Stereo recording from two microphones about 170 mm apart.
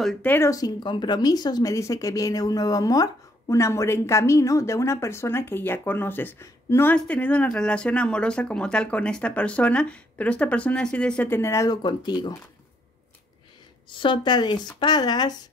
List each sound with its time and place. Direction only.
0.0 s speech: 10° left (ahead or behind)
13.8 s a woman's voice: 30° left (ahead or behind)